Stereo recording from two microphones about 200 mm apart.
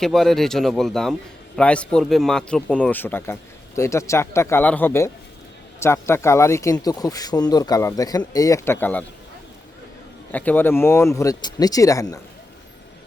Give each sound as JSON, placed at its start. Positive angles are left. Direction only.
{"t": 0.0, "sound": "speech", "side_deg": 0}
{"t": 10.3, "sound": "speech", "side_deg": 10}